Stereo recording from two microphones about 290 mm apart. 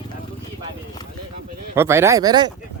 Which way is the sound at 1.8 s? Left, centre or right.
Centre.